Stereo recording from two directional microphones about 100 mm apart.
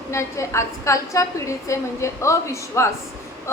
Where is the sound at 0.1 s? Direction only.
30° left (ahead or behind).